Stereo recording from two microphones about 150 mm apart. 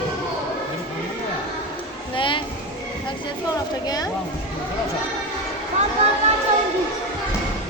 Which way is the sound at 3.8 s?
25° left (ahead or behind).